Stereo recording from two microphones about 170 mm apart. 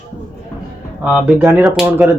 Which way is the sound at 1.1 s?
5° right (ahead or behind).